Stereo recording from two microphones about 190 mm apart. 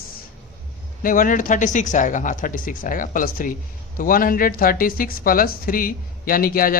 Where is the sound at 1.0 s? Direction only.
45° left (ahead or behind).